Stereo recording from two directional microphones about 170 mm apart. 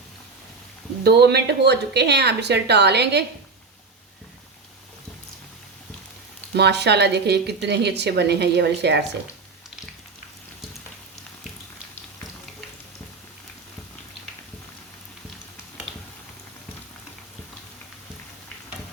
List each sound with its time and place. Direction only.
1.0 s a woman's voice: 75° right (ahead or behind)
6.6 s a woman's voice: 80° right